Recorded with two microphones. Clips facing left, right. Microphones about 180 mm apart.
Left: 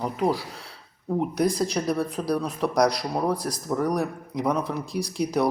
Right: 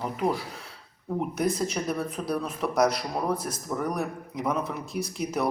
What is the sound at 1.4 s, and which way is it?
A man's voice, 35° left (ahead or behind).